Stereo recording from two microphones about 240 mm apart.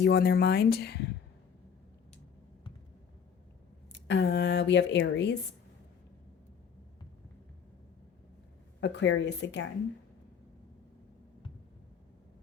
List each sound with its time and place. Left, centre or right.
0.0 s speech: left
4.0 s a woman's voice: left
8.8 s a woman's voice: left